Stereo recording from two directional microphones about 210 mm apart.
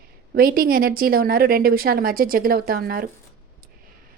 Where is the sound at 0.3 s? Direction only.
45° right (ahead or behind).